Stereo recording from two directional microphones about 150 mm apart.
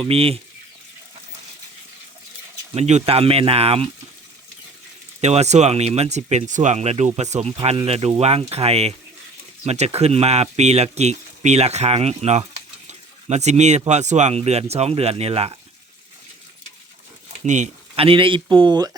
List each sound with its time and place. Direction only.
0.0 s speech: 40° right (ahead or behind)
2.7 s speech: 45° right (ahead or behind)
5.2 s speech: 45° right (ahead or behind)
17.4 s speech: 55° right (ahead or behind); by 18.9 s 30° right (ahead or behind)